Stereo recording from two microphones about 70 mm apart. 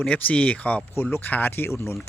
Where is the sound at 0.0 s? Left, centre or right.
Left.